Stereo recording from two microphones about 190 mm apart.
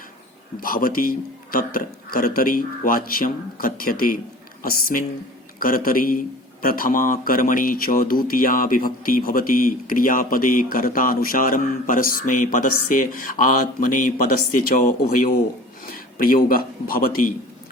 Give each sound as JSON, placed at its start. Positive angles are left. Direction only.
{"t": 0.6, "sound": "a man's voice", "side_deg": 50}